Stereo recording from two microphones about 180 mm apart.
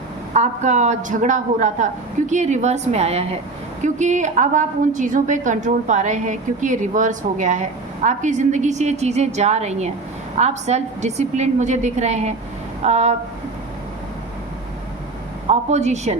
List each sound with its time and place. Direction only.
0.3 s a man's voice: 40° right (ahead or behind)
15.4 s a man's voice: 40° right (ahead or behind)